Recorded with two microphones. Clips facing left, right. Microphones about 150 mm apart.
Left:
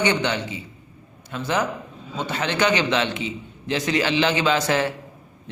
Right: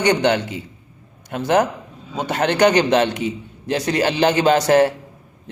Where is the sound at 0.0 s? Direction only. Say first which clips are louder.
Right 5 dB; 45° right (ahead or behind).